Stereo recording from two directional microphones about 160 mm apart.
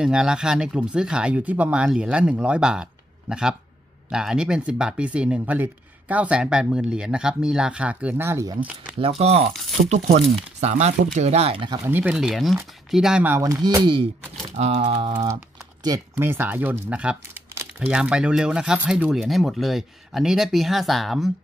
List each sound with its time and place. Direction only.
0.0 s speech: 5° right (ahead or behind)
9.2 s speech: 40° right (ahead or behind)
11.8 s speech: 10° right (ahead or behind)
13.4 s speech: 25° right (ahead or behind)
14.6 s speech: 40° right (ahead or behind)
15.0 s speech: 30° right (ahead or behind)
15.8 s speech: 20° right (ahead or behind); by 21.3 s centre (ahead or behind)